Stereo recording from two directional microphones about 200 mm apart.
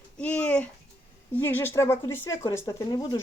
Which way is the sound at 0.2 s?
5° left (ahead or behind).